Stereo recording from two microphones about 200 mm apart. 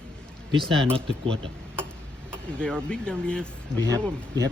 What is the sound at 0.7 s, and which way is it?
Speech, centre (ahead or behind).